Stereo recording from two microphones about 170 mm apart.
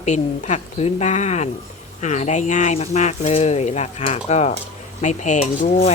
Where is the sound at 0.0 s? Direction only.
45° left (ahead or behind).